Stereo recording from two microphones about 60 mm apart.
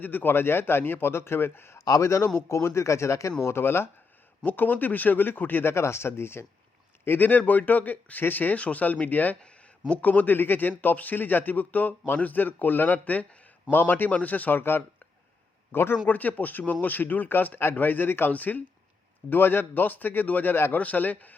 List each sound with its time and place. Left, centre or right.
0.0 s speech: left
3.4 s speech: left
4.4 s speech: left
5.7 s speech: left
7.0 s speech: left
16.0 s speech: left
20.7 s speech: left